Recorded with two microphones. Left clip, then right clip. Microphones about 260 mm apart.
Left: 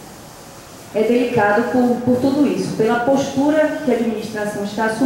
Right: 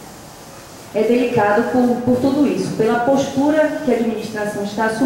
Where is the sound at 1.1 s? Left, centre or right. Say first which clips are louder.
Even; centre.